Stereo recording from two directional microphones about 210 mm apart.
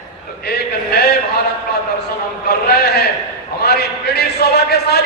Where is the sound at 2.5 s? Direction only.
50° left (ahead or behind).